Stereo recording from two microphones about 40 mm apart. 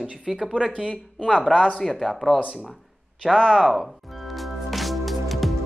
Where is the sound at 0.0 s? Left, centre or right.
Centre.